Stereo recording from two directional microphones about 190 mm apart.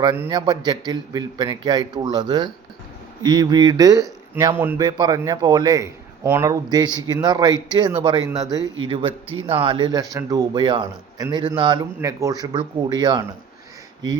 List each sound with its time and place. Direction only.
0.0 s speech: 20° right (ahead or behind)